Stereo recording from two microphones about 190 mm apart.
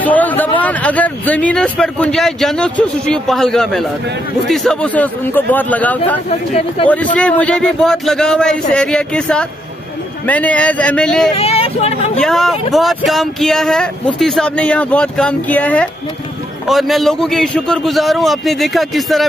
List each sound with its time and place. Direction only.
0.0 s a sound: 10° left (ahead or behind)
0.6 s a man's voice: 10° left (ahead or behind)
7.2 s a man's voice: 5° left (ahead or behind)
11.3 s speech: 30° left (ahead or behind)
12.2 s a man's voice: centre (ahead or behind)